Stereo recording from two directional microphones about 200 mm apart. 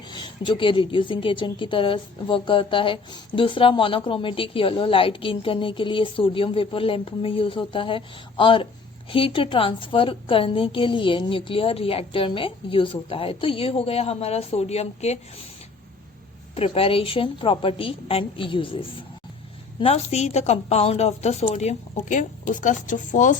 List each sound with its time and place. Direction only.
0.1 s a woman's voice: 25° left (ahead or behind)
16.6 s a woman's voice: 30° left (ahead or behind)